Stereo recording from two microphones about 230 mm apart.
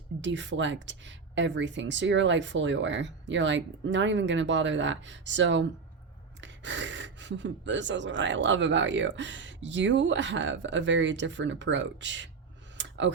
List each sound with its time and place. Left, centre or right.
0.2 s speech: right
12.7 s clicking: right